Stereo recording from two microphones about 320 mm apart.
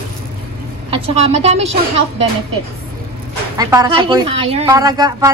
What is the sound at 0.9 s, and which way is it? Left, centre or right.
Speech, centre.